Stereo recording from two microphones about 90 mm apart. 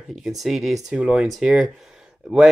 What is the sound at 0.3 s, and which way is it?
Speech, centre (ahead or behind).